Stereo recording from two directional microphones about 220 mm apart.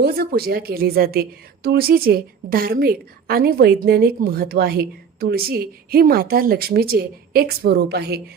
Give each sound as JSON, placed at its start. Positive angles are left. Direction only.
{"t": 0.0, "sound": "a woman's voice", "side_deg": -45}